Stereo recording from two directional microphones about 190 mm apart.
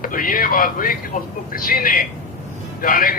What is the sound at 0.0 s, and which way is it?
A man's voice, 50° left (ahead or behind).